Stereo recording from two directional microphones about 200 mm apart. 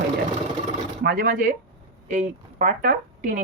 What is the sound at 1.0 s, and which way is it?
Speech, 45° right (ahead or behind).